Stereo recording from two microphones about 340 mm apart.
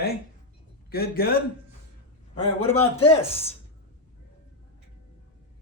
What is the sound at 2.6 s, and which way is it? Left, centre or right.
Speech, centre.